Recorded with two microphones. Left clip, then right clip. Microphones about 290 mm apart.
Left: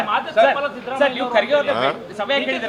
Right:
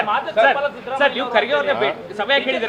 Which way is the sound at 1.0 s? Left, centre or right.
Right.